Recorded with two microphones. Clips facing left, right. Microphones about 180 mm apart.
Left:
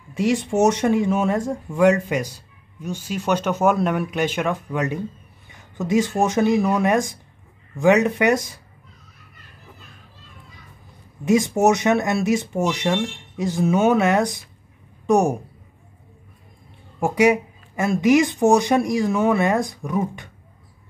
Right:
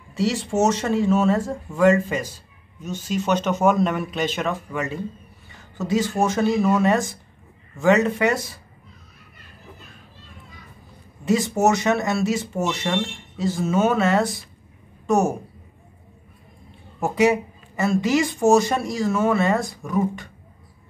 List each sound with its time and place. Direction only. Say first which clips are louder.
0.2 s speech: left 2 dB; 15° left (ahead or behind)
11.2 s speech: left 2 dB; 15° left (ahead or behind)
17.0 s speech: left 2 dB; 15° left (ahead or behind)